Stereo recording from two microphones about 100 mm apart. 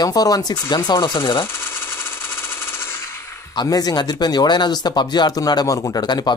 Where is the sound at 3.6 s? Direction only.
40° left (ahead or behind).